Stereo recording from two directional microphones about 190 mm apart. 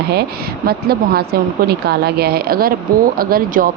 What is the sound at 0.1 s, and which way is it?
Speech, 55° right (ahead or behind).